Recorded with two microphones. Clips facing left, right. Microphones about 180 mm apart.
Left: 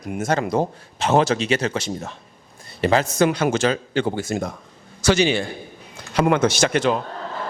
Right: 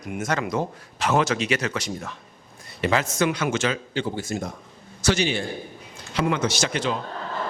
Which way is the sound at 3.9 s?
65° left (ahead or behind).